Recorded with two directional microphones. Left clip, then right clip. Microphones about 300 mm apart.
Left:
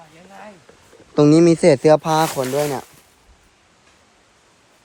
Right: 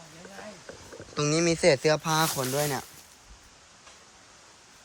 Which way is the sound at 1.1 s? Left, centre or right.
Centre.